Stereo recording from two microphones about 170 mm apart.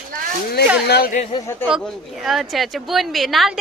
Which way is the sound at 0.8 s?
70° left (ahead or behind).